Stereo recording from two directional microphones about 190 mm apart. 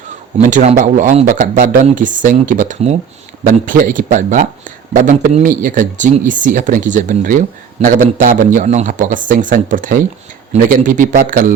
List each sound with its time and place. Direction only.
0.3 s speech: 40° right (ahead or behind)